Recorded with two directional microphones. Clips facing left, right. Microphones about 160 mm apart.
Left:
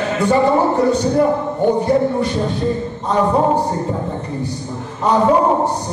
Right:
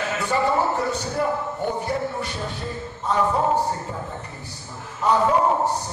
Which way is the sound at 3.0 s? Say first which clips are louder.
Left 6 dB; 35° left (ahead or behind).